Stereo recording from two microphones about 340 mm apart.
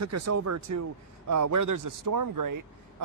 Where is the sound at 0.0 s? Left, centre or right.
Right.